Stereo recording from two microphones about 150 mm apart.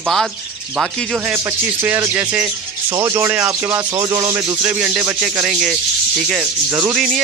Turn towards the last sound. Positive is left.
turn(degrees=0)  # may be behind; listen again after turning